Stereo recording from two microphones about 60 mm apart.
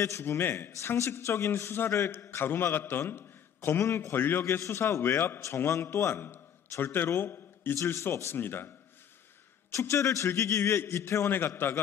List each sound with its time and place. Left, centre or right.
0.3 s a man's voice: left
0.7 s a man's voice: left
5.0 s a man's voice: left
8.4 s a man's voice: left
9.8 s a man's voice: left
11.2 s a man's voice: left